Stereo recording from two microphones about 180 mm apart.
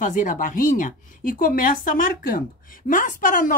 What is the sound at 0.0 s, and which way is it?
Speech, 45° left (ahead or behind).